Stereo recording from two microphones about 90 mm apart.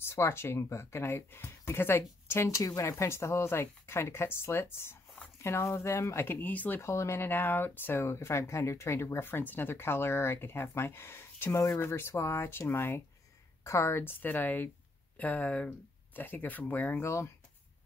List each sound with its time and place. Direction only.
0.0 s speech: 30° left (ahead or behind)
6.8 s speech: 30° left (ahead or behind)
17.0 s speech: 30° left (ahead or behind)